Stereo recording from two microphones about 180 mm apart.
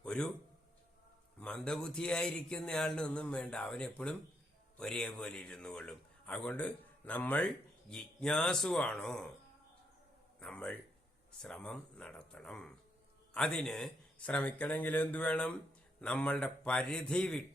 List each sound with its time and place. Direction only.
0.0 s a sound: 5° left (ahead or behind)
1.4 s speech: 5° left (ahead or behind)
10.4 s speech: 5° left (ahead or behind)